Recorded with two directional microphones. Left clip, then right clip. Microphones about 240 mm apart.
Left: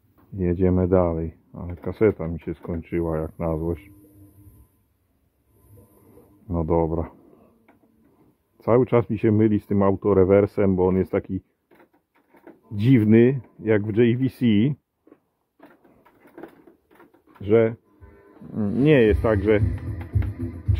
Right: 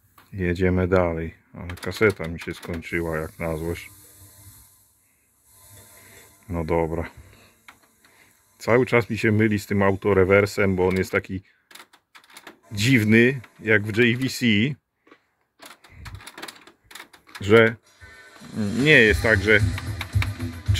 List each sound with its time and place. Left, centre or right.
0.4 s speech: centre
6.5 s speech: centre
8.5 s speech: centre
12.7 s speech: centre
17.4 s speech: right
18.6 s speech: centre